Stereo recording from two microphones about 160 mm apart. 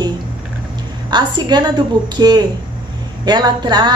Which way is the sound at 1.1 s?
25° right (ahead or behind).